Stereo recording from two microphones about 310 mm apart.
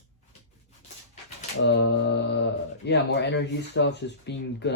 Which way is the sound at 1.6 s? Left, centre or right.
Left.